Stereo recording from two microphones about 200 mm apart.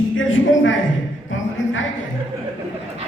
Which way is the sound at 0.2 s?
75° left (ahead or behind).